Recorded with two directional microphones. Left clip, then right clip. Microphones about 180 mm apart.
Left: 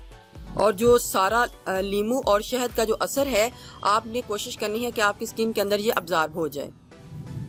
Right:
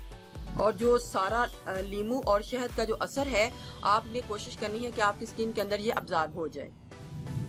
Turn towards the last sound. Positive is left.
turn(degrees=50)  # may be behind; listen again after turning